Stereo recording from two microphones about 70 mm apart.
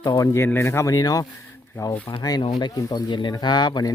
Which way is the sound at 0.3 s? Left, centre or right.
Left.